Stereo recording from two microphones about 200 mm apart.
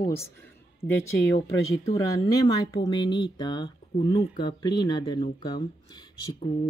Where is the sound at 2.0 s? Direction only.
20° left (ahead or behind).